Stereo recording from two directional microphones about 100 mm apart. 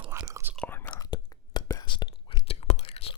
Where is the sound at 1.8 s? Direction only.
50° left (ahead or behind).